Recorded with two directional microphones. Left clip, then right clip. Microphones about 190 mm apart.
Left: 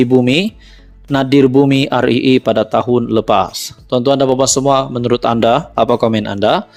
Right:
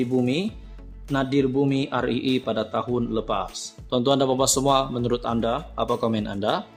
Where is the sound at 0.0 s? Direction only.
45° left (ahead or behind).